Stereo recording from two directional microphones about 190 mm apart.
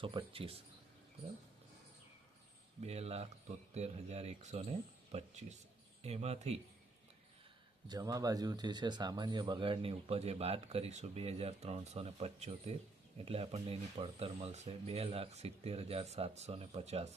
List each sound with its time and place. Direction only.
0.0 s speech: 30° right (ahead or behind)
2.8 s speech: 35° right (ahead or behind)
7.9 s speech: 20° right (ahead or behind)